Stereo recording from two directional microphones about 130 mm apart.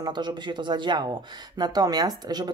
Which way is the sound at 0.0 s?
35° right (ahead or behind).